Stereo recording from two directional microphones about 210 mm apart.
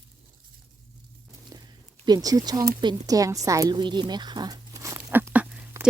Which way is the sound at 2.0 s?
20° right (ahead or behind).